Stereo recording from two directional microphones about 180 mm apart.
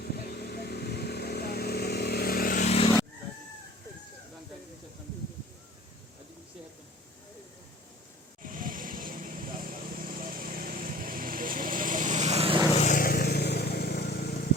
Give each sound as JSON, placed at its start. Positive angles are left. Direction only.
{"t": 0.0, "sound": "vehicle", "side_deg": 60}
{"t": 2.6, "sound": "vehicle", "side_deg": 35}
{"t": 8.4, "sound": "vehicle", "side_deg": -50}
{"t": 12.7, "sound": "vehicle", "side_deg": 45}